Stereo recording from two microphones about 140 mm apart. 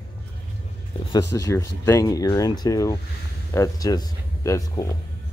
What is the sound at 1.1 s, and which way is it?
Speech, 25° left (ahead or behind).